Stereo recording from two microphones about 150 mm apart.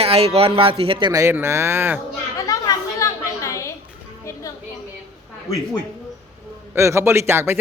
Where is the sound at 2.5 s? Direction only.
20° left (ahead or behind).